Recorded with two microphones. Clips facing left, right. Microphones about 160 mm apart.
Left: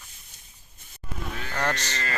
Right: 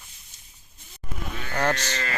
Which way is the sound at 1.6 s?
5° right (ahead or behind).